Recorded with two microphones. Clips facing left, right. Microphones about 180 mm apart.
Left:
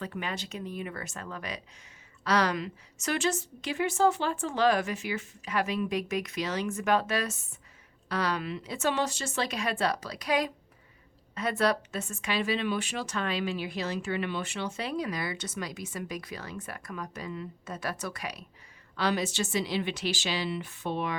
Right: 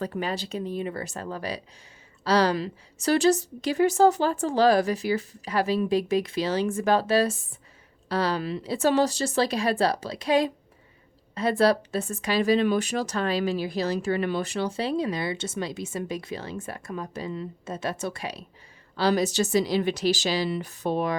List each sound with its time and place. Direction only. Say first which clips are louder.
0.0 s speech: right 6 dB; 35° right (ahead or behind)